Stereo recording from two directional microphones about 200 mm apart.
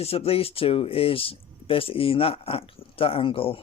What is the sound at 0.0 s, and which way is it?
Speech, 30° left (ahead or behind).